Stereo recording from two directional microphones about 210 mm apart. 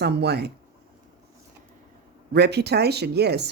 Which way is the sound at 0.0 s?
50° right (ahead or behind).